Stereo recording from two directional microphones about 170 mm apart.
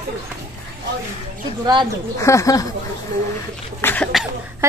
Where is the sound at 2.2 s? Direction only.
15° left (ahead or behind).